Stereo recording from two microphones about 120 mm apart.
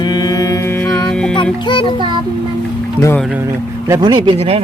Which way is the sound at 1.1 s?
5° left (ahead or behind).